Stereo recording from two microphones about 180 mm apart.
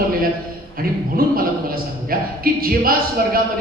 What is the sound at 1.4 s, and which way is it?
Speech, 55° right (ahead or behind).